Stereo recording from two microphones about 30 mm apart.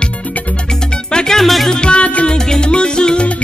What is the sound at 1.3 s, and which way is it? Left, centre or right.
Music, centre.